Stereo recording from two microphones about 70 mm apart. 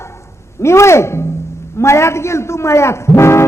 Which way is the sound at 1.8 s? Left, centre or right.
Left.